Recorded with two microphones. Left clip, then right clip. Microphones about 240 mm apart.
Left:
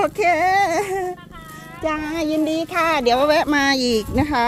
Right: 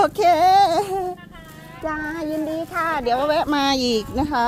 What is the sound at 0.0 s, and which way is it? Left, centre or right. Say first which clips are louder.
Baby cry: right 2 dB; centre.